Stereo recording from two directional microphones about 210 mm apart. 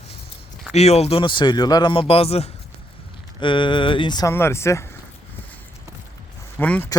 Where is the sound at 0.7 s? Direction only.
30° left (ahead or behind); by 4.9 s 15° left (ahead or behind).